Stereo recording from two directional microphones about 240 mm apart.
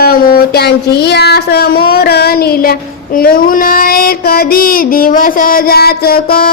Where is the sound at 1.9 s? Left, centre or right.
Left.